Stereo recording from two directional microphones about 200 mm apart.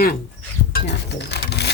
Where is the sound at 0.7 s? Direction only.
55° left (ahead or behind).